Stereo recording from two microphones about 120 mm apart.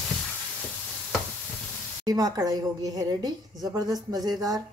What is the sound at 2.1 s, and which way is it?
A woman's voice, 30° right (ahead or behind).